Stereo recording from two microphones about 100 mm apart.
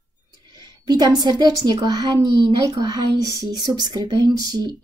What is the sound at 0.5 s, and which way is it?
Speech, 45° right (ahead or behind).